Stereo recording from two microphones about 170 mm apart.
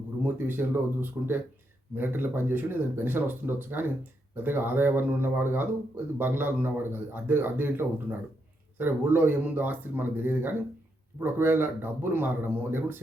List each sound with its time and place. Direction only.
0.3 s speech: 10° right (ahead or behind)